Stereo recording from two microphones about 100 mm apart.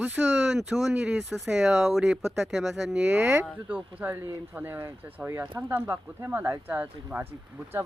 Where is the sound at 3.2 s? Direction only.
20° right (ahead or behind).